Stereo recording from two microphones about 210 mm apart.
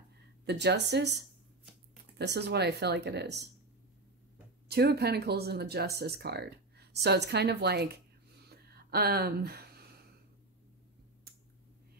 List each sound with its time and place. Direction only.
0.5 s speech: 55° right (ahead or behind)
2.1 s speech: 55° right (ahead or behind)
4.6 s speech: 50° right (ahead or behind)